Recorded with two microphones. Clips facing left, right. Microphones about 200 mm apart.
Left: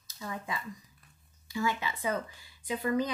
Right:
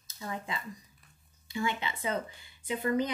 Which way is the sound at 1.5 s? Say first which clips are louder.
Left 1 dB; 25° right (ahead or behind).